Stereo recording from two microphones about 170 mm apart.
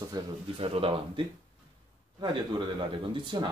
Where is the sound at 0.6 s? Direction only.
35° right (ahead or behind).